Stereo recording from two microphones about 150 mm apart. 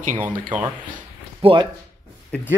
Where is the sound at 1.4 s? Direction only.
35° right (ahead or behind).